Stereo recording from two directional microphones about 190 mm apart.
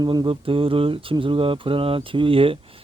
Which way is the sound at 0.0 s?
20° right (ahead or behind).